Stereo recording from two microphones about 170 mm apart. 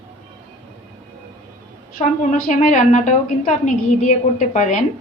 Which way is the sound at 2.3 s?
50° left (ahead or behind).